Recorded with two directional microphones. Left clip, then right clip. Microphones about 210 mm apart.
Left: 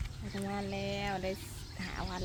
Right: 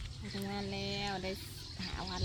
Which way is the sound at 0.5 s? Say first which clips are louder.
Left 2 dB; centre (ahead or behind).